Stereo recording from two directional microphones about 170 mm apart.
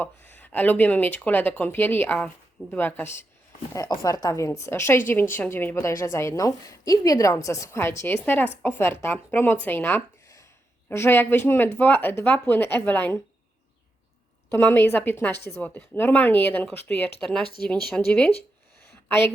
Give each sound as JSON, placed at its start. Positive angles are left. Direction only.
{"t": 0.0, "sound": "a woman's voice", "side_deg": 10}
{"t": 14.5, "sound": "a woman's voice", "side_deg": 15}
{"t": 17.7, "sound": "speech", "side_deg": 5}
{"t": 19.0, "sound": "a woman's voice", "side_deg": 15}